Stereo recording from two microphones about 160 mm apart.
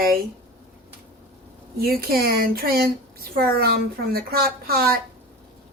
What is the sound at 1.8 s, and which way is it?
Speech, 70° right (ahead or behind).